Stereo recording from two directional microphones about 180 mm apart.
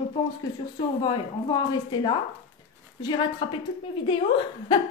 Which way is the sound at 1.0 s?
25° left (ahead or behind).